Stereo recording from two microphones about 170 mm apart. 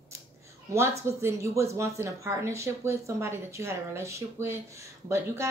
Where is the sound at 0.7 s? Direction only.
15° right (ahead or behind).